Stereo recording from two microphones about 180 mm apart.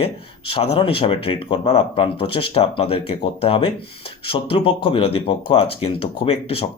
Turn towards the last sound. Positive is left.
turn(degrees=30)  # may be behind; listen again after turning